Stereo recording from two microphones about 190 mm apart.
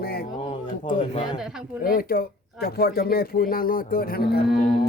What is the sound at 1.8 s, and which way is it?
Speech, 50° left (ahead or behind).